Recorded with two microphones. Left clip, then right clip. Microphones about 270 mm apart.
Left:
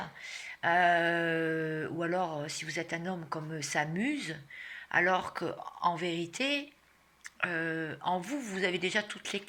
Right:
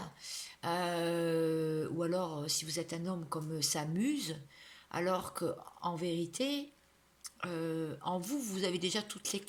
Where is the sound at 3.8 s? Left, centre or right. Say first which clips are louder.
Left 4 dB; right.